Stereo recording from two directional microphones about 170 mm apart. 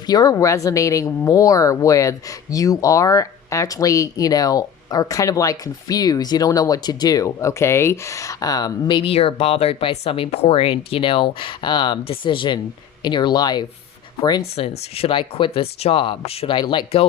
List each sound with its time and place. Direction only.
0.0 s speech: 20° left (ahead or behind)
14.5 s speech: 35° left (ahead or behind)